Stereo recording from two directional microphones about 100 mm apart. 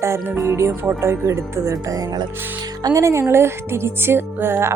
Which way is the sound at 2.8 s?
35° right (ahead or behind).